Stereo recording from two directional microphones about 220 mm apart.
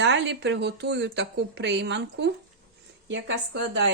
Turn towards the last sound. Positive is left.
turn(degrees=-55)  # may be behind; listen again after turning